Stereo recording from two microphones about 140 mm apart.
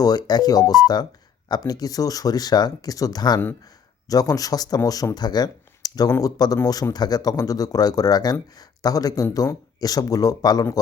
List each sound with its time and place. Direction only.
0.0 s speech: 30° left (ahead or behind)